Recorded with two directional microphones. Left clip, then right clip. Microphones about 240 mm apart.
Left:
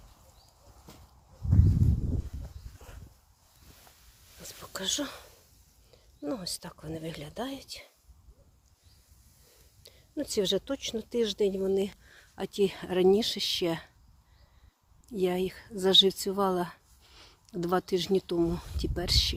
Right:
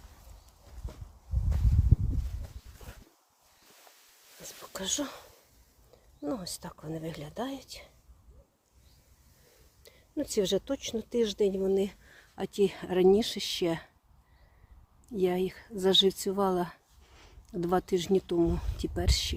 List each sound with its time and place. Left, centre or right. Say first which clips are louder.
0.9 s a sound: right 2 dB; left
2.7 s walk: right 2 dB; centre
4.4 s a sound: left 2 dB; centre
6.2 s speech: left 1 dB; centre
9.8 s speech: right 1 dB; centre
15.1 s speech: even; centre